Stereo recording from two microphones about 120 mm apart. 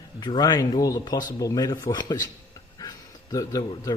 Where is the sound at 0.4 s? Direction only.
30° left (ahead or behind).